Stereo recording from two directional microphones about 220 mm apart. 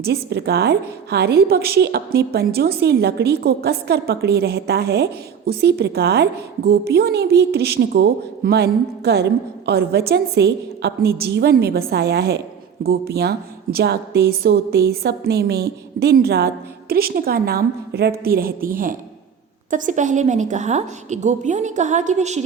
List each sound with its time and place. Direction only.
0.0 s a woman's voice: 50° right (ahead or behind); by 22.4 s 30° right (ahead or behind)